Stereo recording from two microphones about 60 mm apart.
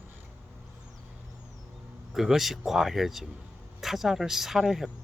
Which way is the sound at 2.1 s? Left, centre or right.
Centre.